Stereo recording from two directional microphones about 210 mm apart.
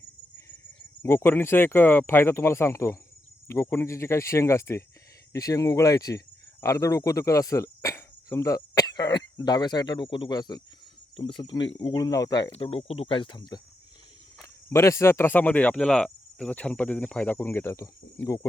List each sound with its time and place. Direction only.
1.0 s cricket: 10° left (ahead or behind)
5.3 s speech: 15° left (ahead or behind)
14.7 s cricket: 15° left (ahead or behind)